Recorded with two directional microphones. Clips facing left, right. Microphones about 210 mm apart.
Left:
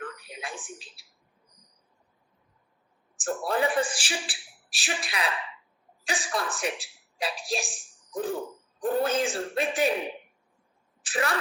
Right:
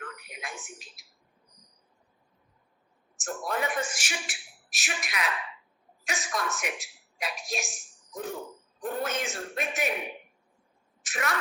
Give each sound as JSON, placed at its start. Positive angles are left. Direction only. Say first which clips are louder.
{"t": 0.2, "sound": "a woman's voice", "louder": "left 3 dB", "side_deg": 30}
{"t": 3.2, "sound": "a man's voice", "louder": "left 5 dB", "side_deg": 30}
{"t": 11.0, "sound": "a sound", "louder": "left 4 dB", "side_deg": 30}